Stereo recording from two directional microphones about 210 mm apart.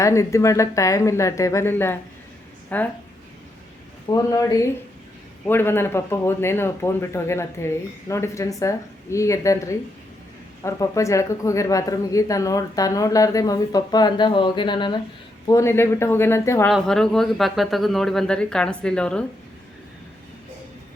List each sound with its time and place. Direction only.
0.0 s a woman's voice: 15° left (ahead or behind)
4.1 s speech: 15° left (ahead or behind)